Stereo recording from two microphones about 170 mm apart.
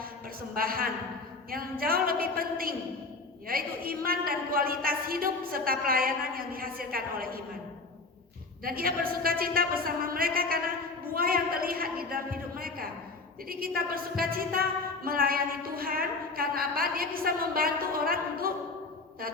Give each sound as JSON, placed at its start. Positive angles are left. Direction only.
{"t": 0.5, "sound": "a woman's voice", "side_deg": -60}
{"t": 8.6, "sound": "a woman's voice", "side_deg": -60}